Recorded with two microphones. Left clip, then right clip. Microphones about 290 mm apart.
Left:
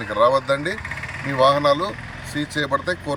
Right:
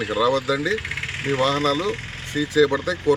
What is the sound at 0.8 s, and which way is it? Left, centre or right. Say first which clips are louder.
Vehicle: right 2 dB; left.